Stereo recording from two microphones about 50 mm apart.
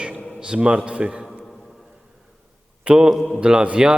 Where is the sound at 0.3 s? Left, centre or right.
Centre.